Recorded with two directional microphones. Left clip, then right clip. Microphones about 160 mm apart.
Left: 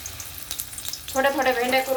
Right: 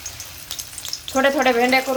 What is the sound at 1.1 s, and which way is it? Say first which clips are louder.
Speech: right 4 dB; 90° right.